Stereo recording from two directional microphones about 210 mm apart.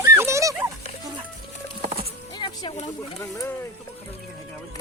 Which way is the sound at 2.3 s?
20° left (ahead or behind).